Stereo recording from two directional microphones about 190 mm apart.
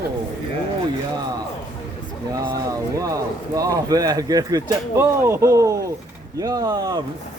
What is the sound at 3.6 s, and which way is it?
Speech, 20° right (ahead or behind).